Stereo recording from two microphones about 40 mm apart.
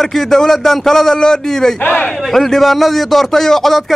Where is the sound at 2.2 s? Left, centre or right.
Centre.